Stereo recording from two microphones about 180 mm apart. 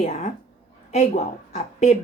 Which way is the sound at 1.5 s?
40° left (ahead or behind).